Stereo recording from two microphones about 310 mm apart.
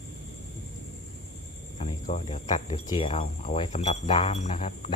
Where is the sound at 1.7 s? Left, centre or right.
Left.